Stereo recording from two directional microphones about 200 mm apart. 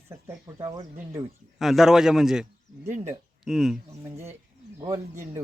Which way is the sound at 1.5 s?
Centre (ahead or behind).